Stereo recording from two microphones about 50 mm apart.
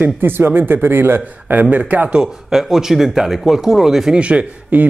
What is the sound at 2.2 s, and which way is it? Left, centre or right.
Speech, centre.